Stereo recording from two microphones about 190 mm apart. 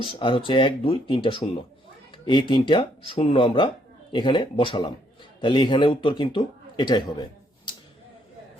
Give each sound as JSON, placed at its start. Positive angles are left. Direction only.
{"t": 0.0, "sound": "a man's voice", "side_deg": 25}